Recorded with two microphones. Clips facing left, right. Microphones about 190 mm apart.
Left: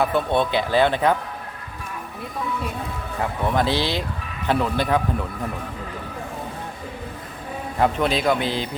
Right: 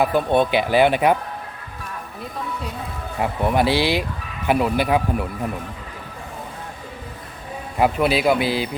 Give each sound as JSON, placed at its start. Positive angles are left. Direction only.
{"t": 0.0, "sound": "speech", "side_deg": -15}
{"t": 3.2, "sound": "speech", "side_deg": -10}
{"t": 7.8, "sound": "speech", "side_deg": -10}